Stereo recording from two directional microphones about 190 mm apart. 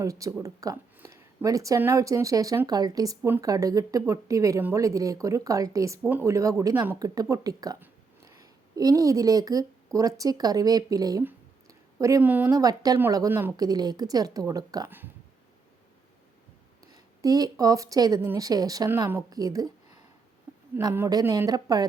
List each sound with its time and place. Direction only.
0.0 s speech: 15° right (ahead or behind)
16.9 s speech: 20° right (ahead or behind)
20.7 s speech: 10° right (ahead or behind)